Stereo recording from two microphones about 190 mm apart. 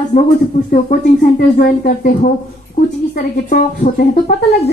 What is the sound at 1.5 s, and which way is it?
Speech, 45° left (ahead or behind).